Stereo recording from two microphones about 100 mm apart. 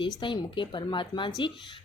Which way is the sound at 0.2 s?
55° left (ahead or behind).